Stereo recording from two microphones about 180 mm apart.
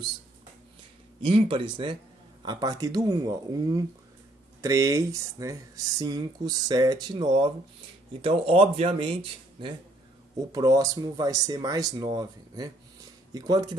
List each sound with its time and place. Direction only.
1.2 s speech: 30° right (ahead or behind)